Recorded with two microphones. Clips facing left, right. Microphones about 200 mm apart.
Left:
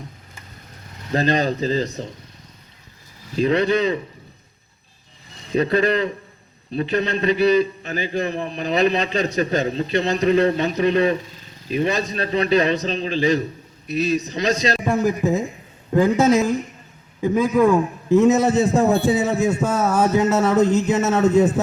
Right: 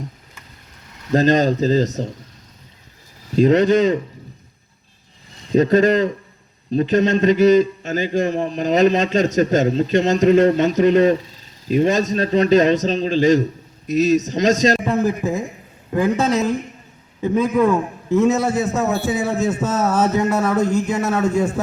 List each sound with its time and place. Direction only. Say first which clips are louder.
1.1 s a man's voice: right 5 dB; 45° right (ahead or behind)
3.3 s a man's voice: right 5 dB; 45° right (ahead or behind)
5.5 s a man's voice: right 5 dB; 45° right (ahead or behind)
14.8 s a man's voice: even; 15° left (ahead or behind)
20.6 s speech: left 2 dB; 10° right (ahead or behind)
21.1 s a man's voice: left 4 dB; 20° left (ahead or behind)